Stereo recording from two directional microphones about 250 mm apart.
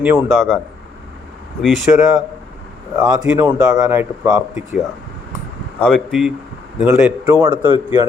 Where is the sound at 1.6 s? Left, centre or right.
Centre.